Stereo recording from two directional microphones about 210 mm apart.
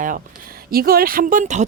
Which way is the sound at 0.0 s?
40° right (ahead or behind).